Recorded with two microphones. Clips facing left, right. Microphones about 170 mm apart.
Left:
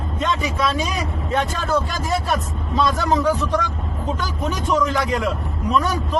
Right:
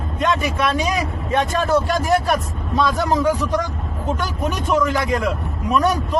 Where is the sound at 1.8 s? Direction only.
75° right (ahead or behind).